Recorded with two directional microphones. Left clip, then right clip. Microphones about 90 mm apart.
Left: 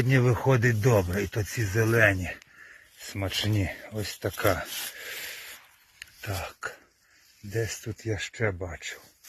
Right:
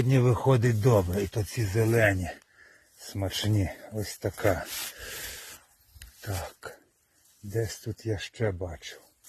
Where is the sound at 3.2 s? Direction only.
25° right (ahead or behind).